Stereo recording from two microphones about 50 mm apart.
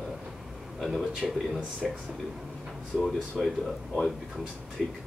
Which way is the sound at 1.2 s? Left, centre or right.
Centre.